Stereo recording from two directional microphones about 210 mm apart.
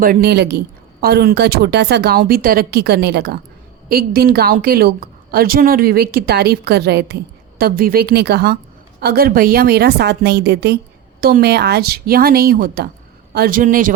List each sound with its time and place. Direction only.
0.0 s a woman's voice: 45° right (ahead or behind)